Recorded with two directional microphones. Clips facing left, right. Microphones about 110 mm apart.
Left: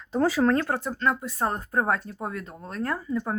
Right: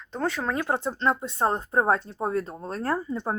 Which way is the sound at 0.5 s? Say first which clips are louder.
Even; 15° right (ahead or behind).